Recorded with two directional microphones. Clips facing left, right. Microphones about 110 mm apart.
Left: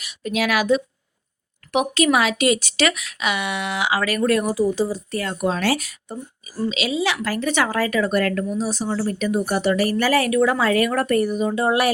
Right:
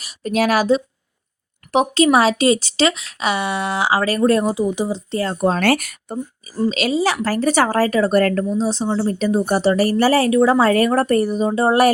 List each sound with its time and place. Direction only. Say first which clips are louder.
0.0 s a woman's voice: right 5 dB; 40° right (ahead or behind)
5.5 s speech: right 4 dB; 55° right (ahead or behind)
6.7 s a woman's voice: right 4 dB; 45° right (ahead or behind)